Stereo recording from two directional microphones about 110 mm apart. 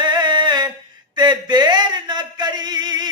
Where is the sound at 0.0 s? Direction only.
40° right (ahead or behind).